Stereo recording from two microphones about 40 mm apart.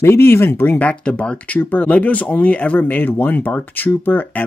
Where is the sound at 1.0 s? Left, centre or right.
Left.